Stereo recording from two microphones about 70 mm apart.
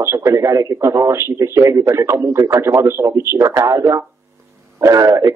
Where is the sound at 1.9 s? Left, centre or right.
Right.